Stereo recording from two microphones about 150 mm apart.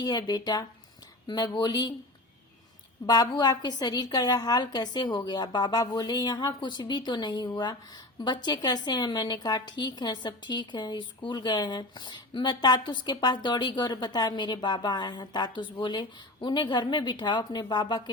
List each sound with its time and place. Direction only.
0.0 s a woman's voice: 25° left (ahead or behind)
3.1 s a woman's voice: 25° left (ahead or behind)